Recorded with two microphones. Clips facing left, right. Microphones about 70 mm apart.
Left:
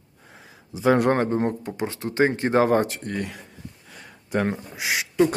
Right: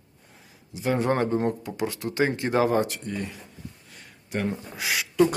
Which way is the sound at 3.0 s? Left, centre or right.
Left.